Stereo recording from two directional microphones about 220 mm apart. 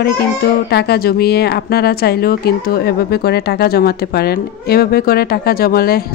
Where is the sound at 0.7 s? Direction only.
45° left (ahead or behind).